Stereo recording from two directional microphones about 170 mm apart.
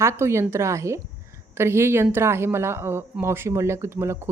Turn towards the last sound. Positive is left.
turn(degrees=-15)  # may be behind; listen again after turning